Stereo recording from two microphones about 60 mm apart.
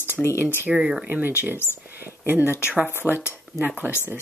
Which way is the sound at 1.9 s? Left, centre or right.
Right.